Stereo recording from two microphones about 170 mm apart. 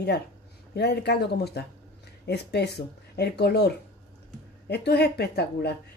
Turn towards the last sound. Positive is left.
turn(degrees=70)  # may be behind; listen again after turning